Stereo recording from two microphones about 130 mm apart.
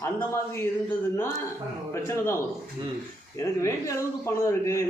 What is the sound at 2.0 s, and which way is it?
Speech, 20° left (ahead or behind).